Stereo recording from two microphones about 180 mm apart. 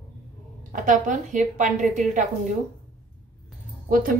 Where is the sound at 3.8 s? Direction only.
50° right (ahead or behind).